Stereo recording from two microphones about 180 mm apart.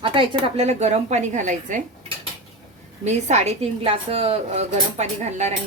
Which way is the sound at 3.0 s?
40° right (ahead or behind).